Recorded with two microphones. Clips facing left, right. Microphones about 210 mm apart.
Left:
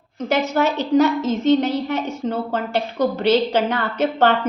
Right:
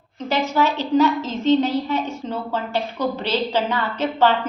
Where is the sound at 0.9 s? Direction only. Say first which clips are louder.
Left 2 dB; 75° left (ahead or behind).